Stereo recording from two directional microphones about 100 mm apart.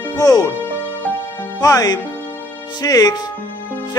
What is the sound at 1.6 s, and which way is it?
Speech, 40° left (ahead or behind).